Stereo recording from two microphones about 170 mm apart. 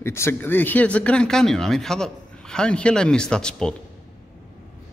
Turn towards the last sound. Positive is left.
turn(degrees=5)  # may be behind; listen again after turning